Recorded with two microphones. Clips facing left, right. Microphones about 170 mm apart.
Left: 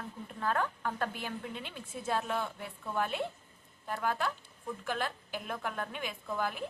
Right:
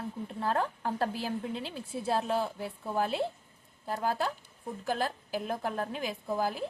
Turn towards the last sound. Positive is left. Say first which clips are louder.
# right 4 dB
turn(degrees=-35)  # may be behind; listen again after turning